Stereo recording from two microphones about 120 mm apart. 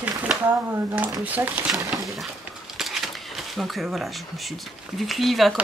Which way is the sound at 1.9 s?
Centre (ahead or behind).